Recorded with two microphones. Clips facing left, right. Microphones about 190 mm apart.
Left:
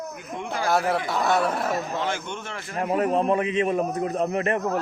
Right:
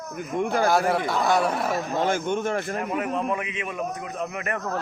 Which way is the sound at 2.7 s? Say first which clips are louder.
Left 4 dB; 35° left (ahead or behind).